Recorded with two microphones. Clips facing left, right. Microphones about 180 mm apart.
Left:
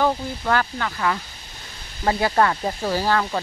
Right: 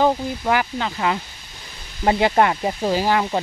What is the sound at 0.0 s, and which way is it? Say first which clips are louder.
Speech: right 3 dB; 15° right (ahead or behind).